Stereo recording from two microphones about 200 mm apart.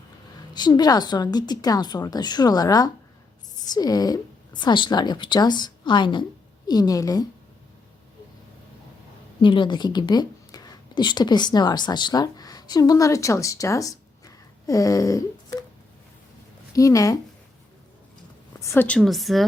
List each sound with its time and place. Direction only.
0.5 s a woman's voice: 20° left (ahead or behind)
9.4 s a woman's voice: 25° left (ahead or behind)
16.7 s speech: 15° left (ahead or behind)
18.6 s a woman's voice: 10° left (ahead or behind)